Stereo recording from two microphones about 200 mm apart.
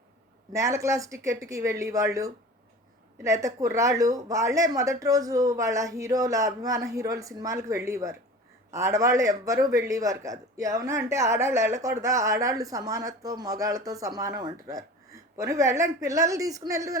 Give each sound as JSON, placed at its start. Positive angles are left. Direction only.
{"t": 0.5, "sound": "a man's voice", "side_deg": -15}